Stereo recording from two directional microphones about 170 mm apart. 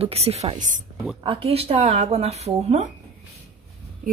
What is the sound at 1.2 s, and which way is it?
Speech, 35° right (ahead or behind).